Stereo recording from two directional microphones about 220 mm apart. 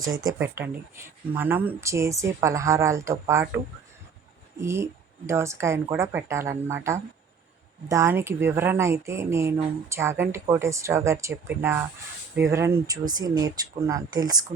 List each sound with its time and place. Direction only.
0.3 s speech: 10° right (ahead or behind)